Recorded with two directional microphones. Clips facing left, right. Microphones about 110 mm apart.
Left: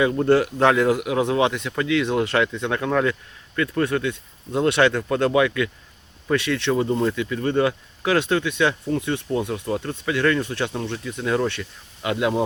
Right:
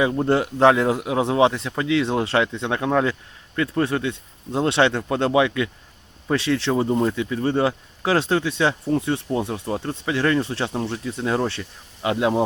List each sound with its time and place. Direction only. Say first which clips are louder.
0.0 s speech: left 2 dB; 25° right (ahead or behind)